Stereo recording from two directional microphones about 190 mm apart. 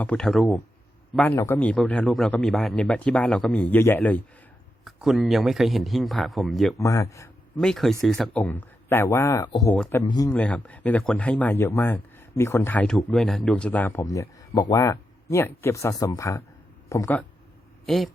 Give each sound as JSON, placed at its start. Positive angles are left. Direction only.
{"t": 0.0, "sound": "speech", "side_deg": 5}
{"t": 4.9, "sound": "speech", "side_deg": 0}
{"t": 6.7, "sound": "a man's voice", "side_deg": 15}
{"t": 7.6, "sound": "speech", "side_deg": 0}
{"t": 10.3, "sound": "speech", "side_deg": 5}
{"t": 17.8, "sound": "speech", "side_deg": 0}